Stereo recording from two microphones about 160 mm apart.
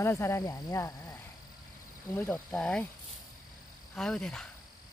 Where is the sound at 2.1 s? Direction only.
5° left (ahead or behind).